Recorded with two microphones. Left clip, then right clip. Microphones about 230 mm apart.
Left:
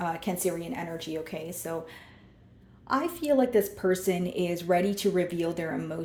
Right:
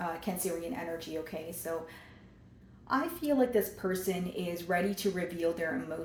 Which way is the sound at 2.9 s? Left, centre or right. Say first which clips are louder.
Left 5 dB; left.